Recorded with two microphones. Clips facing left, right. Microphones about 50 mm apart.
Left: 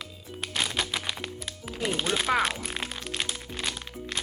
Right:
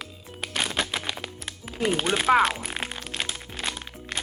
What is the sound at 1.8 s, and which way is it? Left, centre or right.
Speech, right.